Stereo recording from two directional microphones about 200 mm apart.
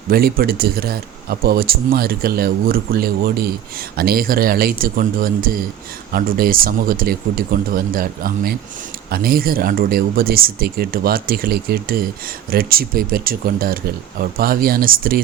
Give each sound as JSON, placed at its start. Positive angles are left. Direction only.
{"t": 0.1, "sound": "speech", "side_deg": -50}